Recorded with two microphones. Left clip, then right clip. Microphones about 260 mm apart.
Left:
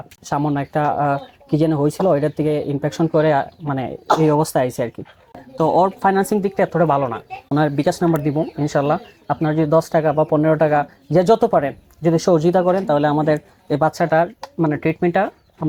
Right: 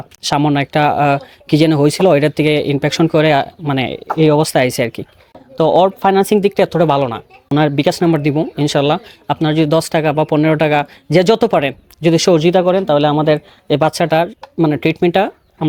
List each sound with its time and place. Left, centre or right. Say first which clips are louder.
0.3 s speech: right 6 dB; right
5.5 s speech: right 5 dB; right
6.3 s speech: right 6 dB; right
11.2 s speech: right 2 dB; right
11.5 s speech: right 3 dB; right
12.3 s speech: right 3 dB; right